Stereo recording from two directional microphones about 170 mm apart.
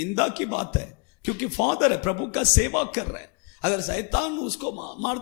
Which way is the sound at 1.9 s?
15° left (ahead or behind).